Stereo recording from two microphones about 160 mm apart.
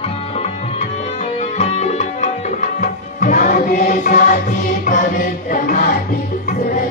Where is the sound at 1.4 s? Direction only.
45° left (ahead or behind); by 4.2 s 60° left (ahead or behind).